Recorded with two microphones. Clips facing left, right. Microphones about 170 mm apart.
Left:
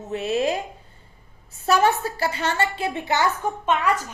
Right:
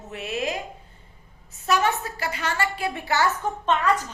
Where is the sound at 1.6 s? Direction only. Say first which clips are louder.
Left 4 dB; 30° left (ahead or behind).